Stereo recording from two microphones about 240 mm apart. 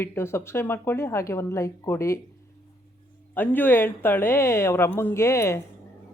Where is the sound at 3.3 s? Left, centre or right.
Centre.